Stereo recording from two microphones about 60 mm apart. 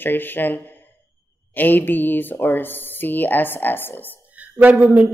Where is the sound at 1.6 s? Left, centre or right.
Left.